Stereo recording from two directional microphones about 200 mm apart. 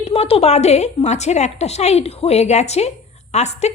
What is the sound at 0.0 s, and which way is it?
A woman's voice, 30° left (ahead or behind).